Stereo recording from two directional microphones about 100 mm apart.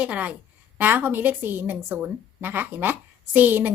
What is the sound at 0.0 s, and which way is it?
A woman's voice, 15° right (ahead or behind).